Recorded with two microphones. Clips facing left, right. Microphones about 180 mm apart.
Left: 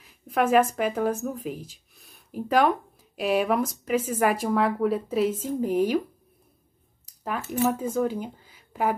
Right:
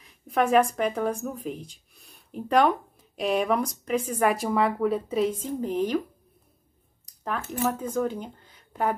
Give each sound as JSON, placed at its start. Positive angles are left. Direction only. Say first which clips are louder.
{"t": 0.0, "sound": "speech", "louder": "even", "side_deg": 5}
{"t": 7.1, "sound": "a sound", "louder": "even", "side_deg": 5}
{"t": 7.6, "sound": "speech", "louder": "left 2 dB", "side_deg": 10}